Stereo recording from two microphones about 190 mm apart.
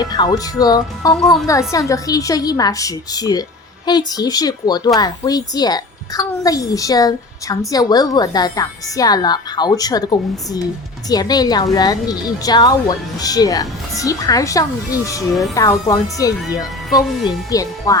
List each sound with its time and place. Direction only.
0.0 s a woman's voice: 20° left (ahead or behind)
1.1 s speech: centre (ahead or behind)
1.5 s a woman's voice: 15° left (ahead or behind)
16.6 s speech: centre (ahead or behind)
17.2 s speech: 20° left (ahead or behind)